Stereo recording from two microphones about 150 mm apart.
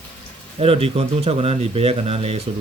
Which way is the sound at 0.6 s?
40° right (ahead or behind).